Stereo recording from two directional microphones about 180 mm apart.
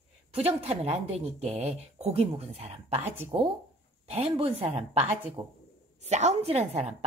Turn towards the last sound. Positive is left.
turn(degrees=-35)  # may be behind; listen again after turning